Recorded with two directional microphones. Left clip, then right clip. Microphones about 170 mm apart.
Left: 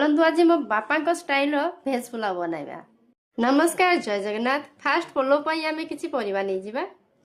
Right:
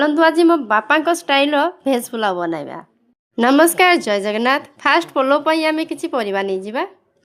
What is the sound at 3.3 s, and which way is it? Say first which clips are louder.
Speech: right 8 dB; 55° right (ahead or behind).